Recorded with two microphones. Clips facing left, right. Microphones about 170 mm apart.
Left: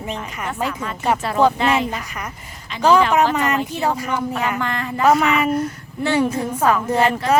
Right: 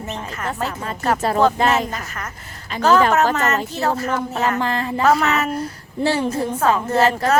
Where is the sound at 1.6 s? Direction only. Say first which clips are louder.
Even; 45° right (ahead or behind).